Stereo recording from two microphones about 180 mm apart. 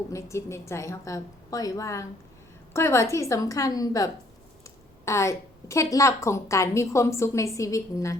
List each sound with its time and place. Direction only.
0.1 s a woman's voice: 15° left (ahead or behind)